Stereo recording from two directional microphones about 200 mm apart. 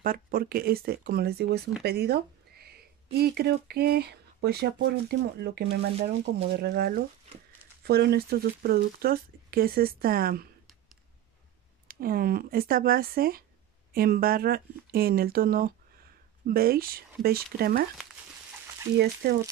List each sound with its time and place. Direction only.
0.0 s speech: 45° right (ahead or behind)
11.9 s speech: 45° right (ahead or behind)
18.9 s speech: 15° right (ahead or behind)